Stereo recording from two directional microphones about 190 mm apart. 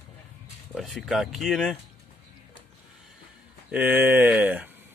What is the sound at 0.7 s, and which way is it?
Speech, centre (ahead or behind).